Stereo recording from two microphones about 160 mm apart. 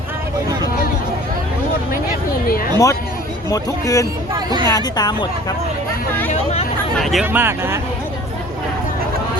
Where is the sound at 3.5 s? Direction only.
20° left (ahead or behind).